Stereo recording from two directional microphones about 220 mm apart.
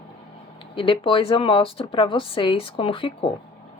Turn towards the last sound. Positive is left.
turn(degrees=25)  # may be behind; listen again after turning